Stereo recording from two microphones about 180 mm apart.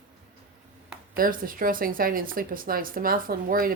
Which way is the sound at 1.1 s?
50° right (ahead or behind).